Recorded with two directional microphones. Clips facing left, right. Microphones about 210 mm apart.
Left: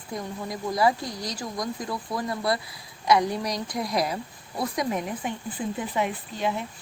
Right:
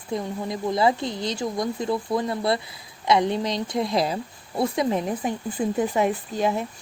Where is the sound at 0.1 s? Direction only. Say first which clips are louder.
Right 5 dB; 25° right (ahead or behind).